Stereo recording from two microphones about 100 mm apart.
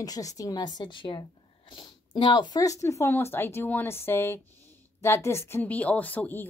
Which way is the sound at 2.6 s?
30° left (ahead or behind).